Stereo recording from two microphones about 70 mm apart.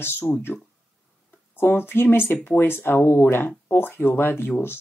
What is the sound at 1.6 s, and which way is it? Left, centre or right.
Speech, left.